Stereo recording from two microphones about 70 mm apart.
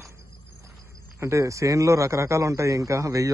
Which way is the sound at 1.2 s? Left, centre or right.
Right.